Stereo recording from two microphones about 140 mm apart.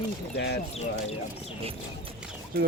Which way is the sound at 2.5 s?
90° right.